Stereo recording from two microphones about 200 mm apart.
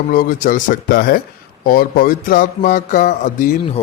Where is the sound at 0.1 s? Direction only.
45° left (ahead or behind).